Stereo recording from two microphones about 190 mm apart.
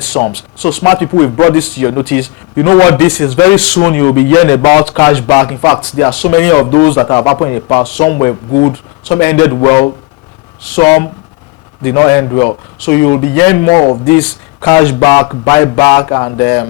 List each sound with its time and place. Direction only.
0.1 s speech: 20° left (ahead or behind)
14.1 s speech: 15° left (ahead or behind)